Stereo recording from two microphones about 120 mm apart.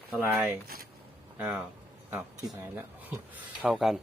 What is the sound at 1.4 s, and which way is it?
Speech, 15° right (ahead or behind).